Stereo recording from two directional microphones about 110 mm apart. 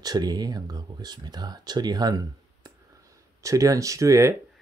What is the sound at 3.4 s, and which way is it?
Speech, 30° right (ahead or behind).